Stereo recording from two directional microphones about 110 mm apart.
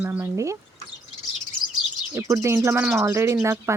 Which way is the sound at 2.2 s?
25° right (ahead or behind).